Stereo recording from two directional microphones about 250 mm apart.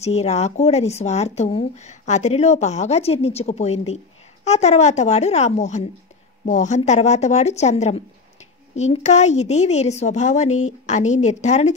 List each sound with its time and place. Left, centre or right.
0.0 s speech: left